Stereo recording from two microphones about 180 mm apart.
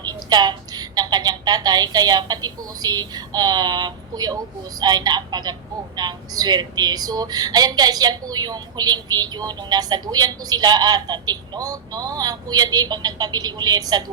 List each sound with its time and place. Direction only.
0.1 s a woman's voice: 25° right (ahead or behind)